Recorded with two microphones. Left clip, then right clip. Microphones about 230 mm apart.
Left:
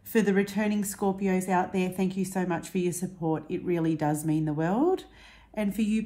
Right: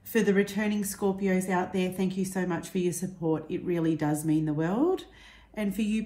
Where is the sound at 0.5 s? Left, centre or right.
Left.